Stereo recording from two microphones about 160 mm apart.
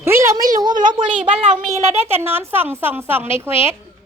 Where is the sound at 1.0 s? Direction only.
45° right (ahead or behind).